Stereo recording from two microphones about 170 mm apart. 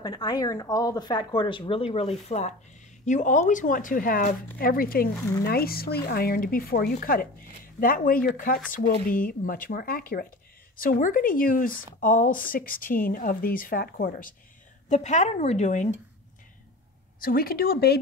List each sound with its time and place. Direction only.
0.0 s speech: 25° left (ahead or behind); by 14.3 s 55° left (ahead or behind)
14.9 s speech: 45° left (ahead or behind)
17.2 s speech: 60° left (ahead or behind)